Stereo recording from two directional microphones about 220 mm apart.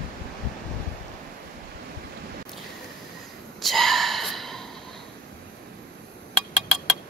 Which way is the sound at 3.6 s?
Centre (ahead or behind).